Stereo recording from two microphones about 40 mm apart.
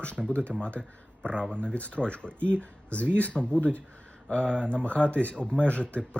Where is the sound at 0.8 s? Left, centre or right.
Left.